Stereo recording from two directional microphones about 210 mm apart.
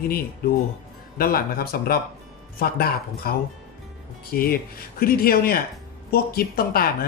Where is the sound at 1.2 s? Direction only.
45° left (ahead or behind).